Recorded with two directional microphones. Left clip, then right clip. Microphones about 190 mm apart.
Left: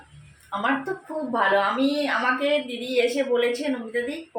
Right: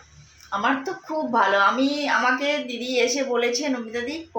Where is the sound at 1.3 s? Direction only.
20° right (ahead or behind).